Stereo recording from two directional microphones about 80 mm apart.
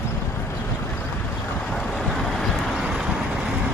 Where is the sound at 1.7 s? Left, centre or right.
Centre.